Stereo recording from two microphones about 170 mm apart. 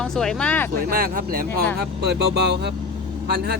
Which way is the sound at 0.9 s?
60° right (ahead or behind).